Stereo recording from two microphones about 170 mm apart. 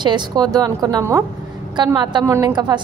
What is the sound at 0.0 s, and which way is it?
A woman's voice, 25° right (ahead or behind).